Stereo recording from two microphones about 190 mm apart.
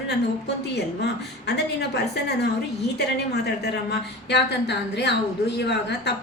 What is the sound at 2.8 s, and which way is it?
A woman's voice, 60° left (ahead or behind).